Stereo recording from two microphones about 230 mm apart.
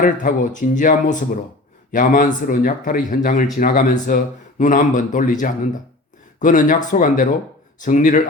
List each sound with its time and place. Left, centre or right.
0.0 s speech: left